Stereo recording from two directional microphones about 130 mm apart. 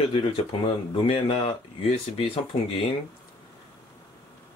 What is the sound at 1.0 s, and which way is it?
Speech, 45° left (ahead or behind).